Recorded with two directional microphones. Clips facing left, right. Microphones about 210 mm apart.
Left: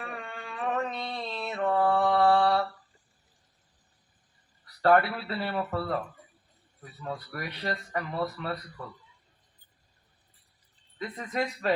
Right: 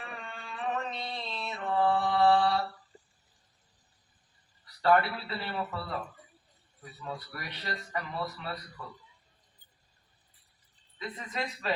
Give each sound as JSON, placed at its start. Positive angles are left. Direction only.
{"t": 0.0, "sound": "a sound", "side_deg": 50}
{"t": 4.8, "sound": "speech", "side_deg": 50}
{"t": 7.0, "sound": "speech", "side_deg": 50}
{"t": 10.9, "sound": "speech", "side_deg": 50}